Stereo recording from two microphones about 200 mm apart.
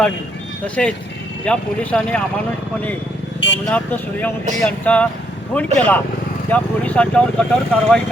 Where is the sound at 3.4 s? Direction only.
65° left (ahead or behind).